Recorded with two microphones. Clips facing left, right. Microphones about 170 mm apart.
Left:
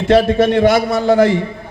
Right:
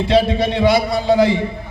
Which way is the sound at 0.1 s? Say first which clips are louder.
Left 6 dB; 50° left (ahead or behind).